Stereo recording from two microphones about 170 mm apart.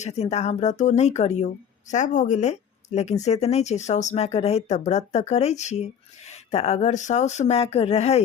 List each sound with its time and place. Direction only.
0.0 s speech: 40° left (ahead or behind)